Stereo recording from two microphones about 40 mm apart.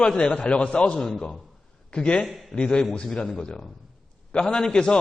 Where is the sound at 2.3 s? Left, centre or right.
Centre.